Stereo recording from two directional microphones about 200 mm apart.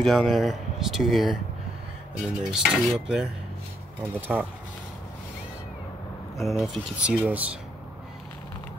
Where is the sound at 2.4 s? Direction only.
5° right (ahead or behind).